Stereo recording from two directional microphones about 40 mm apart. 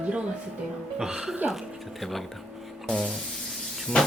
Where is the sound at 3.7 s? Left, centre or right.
Centre.